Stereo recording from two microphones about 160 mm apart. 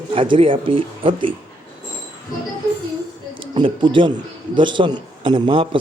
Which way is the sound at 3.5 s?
30° right (ahead or behind).